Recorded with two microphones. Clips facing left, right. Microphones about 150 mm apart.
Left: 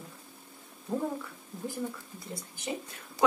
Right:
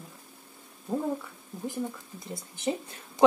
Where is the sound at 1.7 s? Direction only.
20° right (ahead or behind).